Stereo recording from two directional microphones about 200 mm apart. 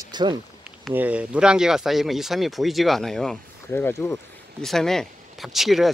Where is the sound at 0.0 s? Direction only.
20° right (ahead or behind).